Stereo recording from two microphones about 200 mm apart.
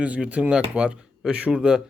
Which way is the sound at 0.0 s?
5° right (ahead or behind).